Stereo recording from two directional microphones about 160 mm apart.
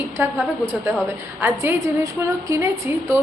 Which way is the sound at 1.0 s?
15° right (ahead or behind).